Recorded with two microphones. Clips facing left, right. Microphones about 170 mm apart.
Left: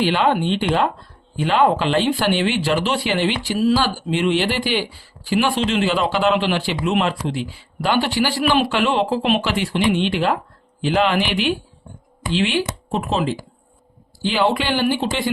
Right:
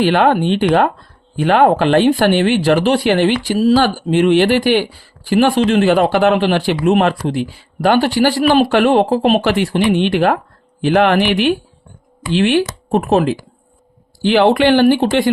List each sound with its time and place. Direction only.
0.0 s speech: 55° right (ahead or behind)
8.7 s speech: 55° right (ahead or behind)
9.4 s speech: 55° right (ahead or behind)